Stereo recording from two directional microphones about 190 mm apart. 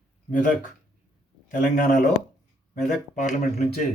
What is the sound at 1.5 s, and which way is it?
Speech, 40° left (ahead or behind).